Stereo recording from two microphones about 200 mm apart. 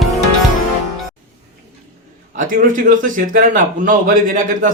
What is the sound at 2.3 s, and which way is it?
Speech, 45° right (ahead or behind).